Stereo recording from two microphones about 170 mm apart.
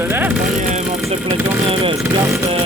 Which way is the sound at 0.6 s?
45° right (ahead or behind).